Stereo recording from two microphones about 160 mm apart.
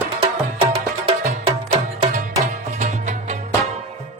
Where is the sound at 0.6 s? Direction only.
35° right (ahead or behind).